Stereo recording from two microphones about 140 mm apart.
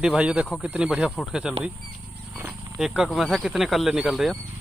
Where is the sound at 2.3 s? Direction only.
10° right (ahead or behind).